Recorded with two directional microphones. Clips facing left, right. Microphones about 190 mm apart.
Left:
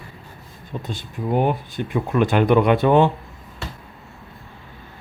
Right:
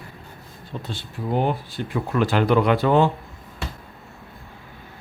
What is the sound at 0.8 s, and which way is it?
Speech, 15° left (ahead or behind).